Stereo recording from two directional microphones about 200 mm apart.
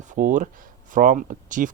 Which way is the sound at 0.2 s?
40° right (ahead or behind).